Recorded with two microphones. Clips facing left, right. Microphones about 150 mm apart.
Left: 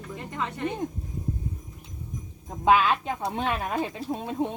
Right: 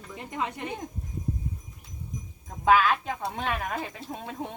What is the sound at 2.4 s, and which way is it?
Speech, 20° left (ahead or behind).